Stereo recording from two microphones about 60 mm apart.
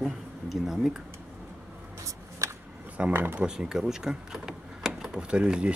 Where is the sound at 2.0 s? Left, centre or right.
Right.